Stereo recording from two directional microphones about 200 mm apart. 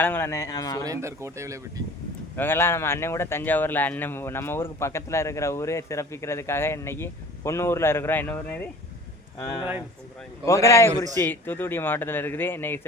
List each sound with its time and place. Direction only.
0.0 s speech: 10° left (ahead or behind)
0.9 s speech: 15° right (ahead or behind)
2.3 s speech: 10° left (ahead or behind)
10.4 s speech: 15° left (ahead or behind)